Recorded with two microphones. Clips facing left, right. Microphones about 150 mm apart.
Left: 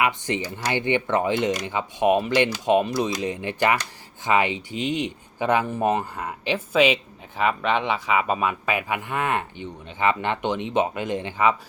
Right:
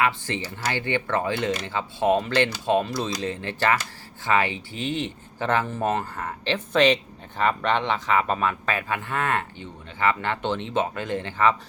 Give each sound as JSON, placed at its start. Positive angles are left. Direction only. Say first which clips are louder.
{"t": 0.0, "sound": "speech", "louder": "left 1 dB", "side_deg": 15}